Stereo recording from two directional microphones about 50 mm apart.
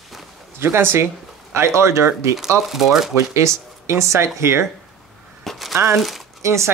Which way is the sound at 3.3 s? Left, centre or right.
Right.